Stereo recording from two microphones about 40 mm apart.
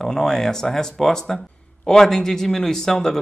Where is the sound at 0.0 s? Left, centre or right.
Centre.